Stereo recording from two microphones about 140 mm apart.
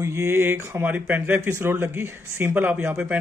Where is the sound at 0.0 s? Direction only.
20° right (ahead or behind).